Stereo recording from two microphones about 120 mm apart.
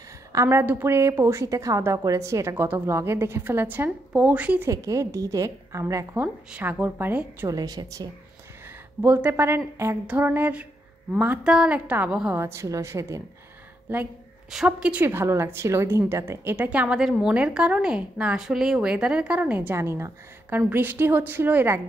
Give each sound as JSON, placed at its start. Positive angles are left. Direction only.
{"t": 0.3, "sound": "a woman's voice", "side_deg": -25}
{"t": 4.6, "sound": "a woman's voice", "side_deg": -25}
{"t": 6.2, "sound": "a woman's voice", "side_deg": -15}
{"t": 7.4, "sound": "a woman's voice", "side_deg": -30}
{"t": 9.0, "sound": "a woman's voice", "side_deg": -15}
{"t": 14.5, "sound": "a woman's voice", "side_deg": -5}
{"t": 15.0, "sound": "a woman's voice", "side_deg": -20}
{"t": 19.7, "sound": "a woman's voice", "side_deg": -20}